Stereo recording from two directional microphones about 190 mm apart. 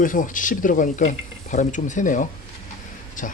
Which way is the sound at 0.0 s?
45° left (ahead or behind).